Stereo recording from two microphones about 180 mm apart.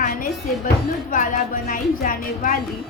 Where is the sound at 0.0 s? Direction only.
50° left (ahead or behind).